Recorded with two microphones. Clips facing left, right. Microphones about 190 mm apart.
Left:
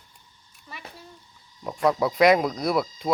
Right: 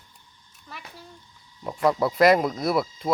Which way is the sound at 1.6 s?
Centre (ahead or behind).